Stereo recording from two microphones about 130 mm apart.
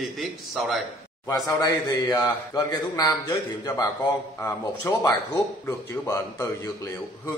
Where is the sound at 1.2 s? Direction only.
30° left (ahead or behind).